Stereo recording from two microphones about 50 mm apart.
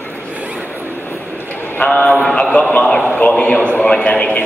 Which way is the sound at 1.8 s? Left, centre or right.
Left.